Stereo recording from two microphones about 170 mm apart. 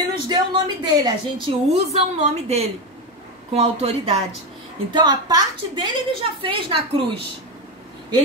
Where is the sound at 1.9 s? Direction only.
40° right (ahead or behind).